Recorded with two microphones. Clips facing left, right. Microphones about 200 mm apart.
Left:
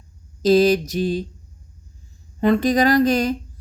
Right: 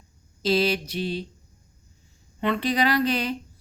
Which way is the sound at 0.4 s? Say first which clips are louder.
Left 8 dB; 45° left (ahead or behind).